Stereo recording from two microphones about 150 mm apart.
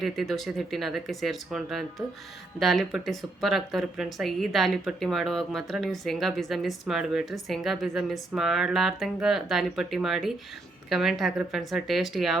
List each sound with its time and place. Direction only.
0.0 s speech: centre (ahead or behind)